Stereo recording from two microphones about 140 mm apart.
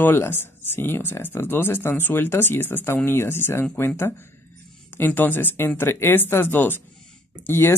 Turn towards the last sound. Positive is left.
turn(degrees=15)  # may be behind; listen again after turning